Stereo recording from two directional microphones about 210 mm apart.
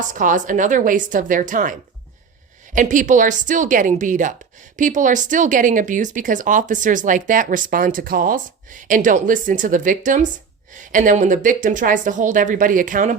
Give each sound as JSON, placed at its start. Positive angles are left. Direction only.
{"t": 0.1, "sound": "speech", "side_deg": -35}
{"t": 2.7, "sound": "speech", "side_deg": -40}